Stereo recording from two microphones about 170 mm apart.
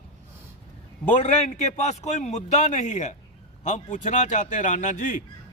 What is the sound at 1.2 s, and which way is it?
A man's voice, 40° left (ahead or behind).